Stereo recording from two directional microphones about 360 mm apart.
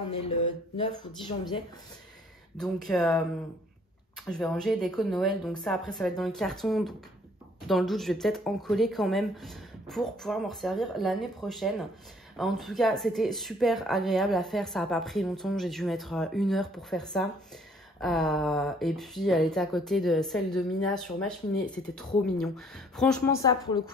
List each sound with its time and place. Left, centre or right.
0.7 s speech: centre
2.5 s speech: centre
4.3 s speech: centre